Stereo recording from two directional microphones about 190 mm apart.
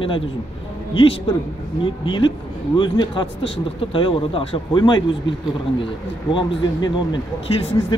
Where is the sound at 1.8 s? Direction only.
25° left (ahead or behind).